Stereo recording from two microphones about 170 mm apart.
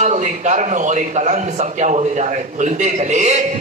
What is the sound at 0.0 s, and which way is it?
A man's voice, 45° right (ahead or behind).